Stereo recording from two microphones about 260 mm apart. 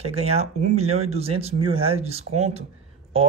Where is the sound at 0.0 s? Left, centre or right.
Right.